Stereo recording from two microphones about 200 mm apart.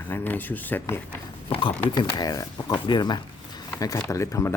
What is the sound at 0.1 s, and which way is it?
Speech, 10° left (ahead or behind).